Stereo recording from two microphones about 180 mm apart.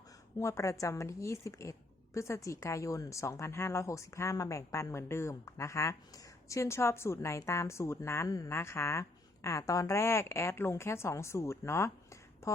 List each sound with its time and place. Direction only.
0.3 s a woman's voice: 15° left (ahead or behind)